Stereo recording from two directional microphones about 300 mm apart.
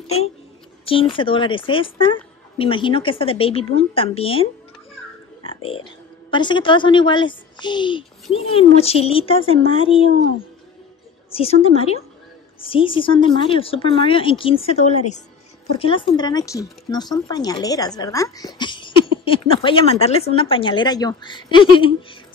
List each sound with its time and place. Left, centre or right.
0.0 s a child's voice: left
5.4 s a sound: centre
6.3 s speech: centre
11.3 s speech: centre